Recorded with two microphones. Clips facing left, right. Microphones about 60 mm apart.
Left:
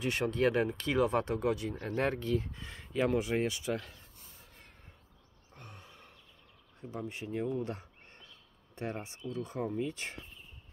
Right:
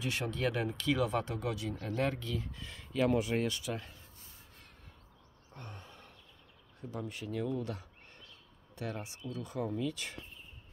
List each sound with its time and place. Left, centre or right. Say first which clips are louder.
0.0 s speech: left 5 dB; left; by 3.6 s centre
5.5 s sigh: right 3 dB; centre
7.0 s speech: left 1 dB; left